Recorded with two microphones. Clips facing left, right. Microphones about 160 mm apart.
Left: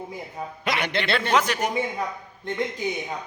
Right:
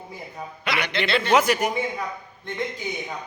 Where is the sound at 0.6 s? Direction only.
45° left (ahead or behind).